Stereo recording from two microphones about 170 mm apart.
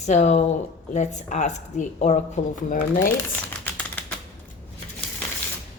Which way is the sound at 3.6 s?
10° left (ahead or behind).